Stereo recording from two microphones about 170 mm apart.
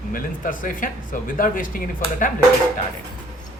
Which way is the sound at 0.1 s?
50° left (ahead or behind).